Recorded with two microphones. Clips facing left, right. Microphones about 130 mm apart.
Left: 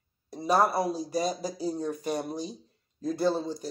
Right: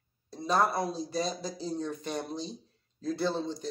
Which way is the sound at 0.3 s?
10° left (ahead or behind).